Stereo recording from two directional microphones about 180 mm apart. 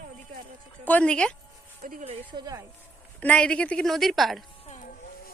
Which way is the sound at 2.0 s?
30° right (ahead or behind).